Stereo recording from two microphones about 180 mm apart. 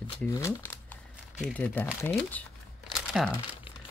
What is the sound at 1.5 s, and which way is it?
Speech, 10° left (ahead or behind).